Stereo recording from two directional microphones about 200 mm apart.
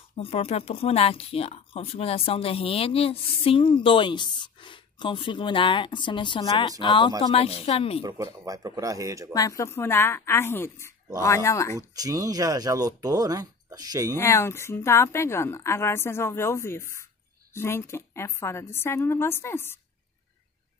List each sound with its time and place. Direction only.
0.1 s speech: 30° left (ahead or behind)
8.0 s speech: 20° right (ahead or behind)
9.3 s a woman's voice: 15° left (ahead or behind)
11.9 s speech: 15° right (ahead or behind)
14.1 s a woman's voice: 15° left (ahead or behind)